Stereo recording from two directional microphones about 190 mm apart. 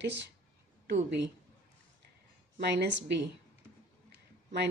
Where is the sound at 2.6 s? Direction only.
60° right (ahead or behind).